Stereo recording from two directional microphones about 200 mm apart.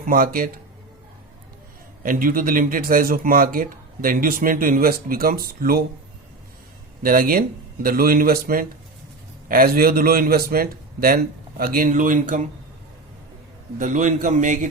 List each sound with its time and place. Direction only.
0.0 s speech: 45° right (ahead or behind)
2.0 s speech: 45° right (ahead or behind)
7.0 s speech: 45° right (ahead or behind)
13.7 s a man's voice: 40° right (ahead or behind)